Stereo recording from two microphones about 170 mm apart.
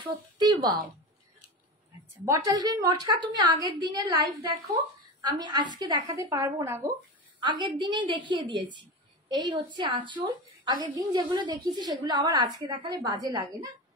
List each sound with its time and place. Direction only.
0.0 s a woman's voice: 25° right (ahead or behind)
2.2 s a woman's voice: 20° right (ahead or behind)
7.3 s a woman's voice: 25° right (ahead or behind)